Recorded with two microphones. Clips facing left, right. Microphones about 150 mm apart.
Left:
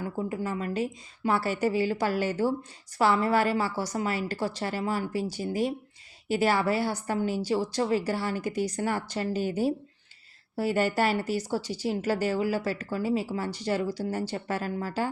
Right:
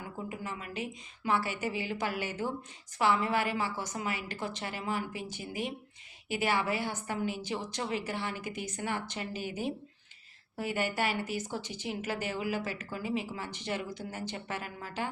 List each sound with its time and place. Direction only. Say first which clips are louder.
0.3 s a woman's voice: left 9 dB; 40° left (ahead or behind)